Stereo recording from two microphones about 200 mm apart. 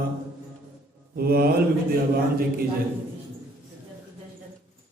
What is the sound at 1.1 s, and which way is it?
Speech, 50° right (ahead or behind).